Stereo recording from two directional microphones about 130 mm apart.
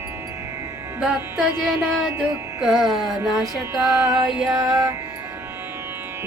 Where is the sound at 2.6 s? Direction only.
5° right (ahead or behind).